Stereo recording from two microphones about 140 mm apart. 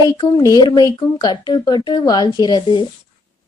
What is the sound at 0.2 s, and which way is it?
Speech, 30° left (ahead or behind).